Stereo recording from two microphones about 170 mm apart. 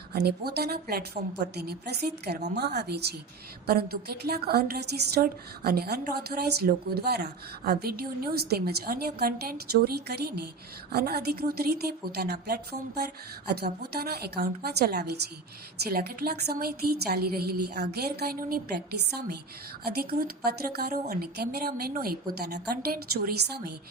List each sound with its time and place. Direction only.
0.1 s a woman's voice: 70° right (ahead or behind)